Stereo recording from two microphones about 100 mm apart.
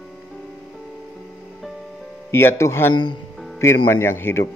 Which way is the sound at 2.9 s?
50° left (ahead or behind).